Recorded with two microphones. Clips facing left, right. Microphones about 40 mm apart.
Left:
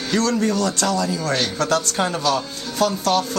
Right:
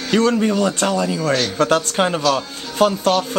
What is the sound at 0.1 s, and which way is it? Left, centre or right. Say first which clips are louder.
Speech: right 4 dB; right.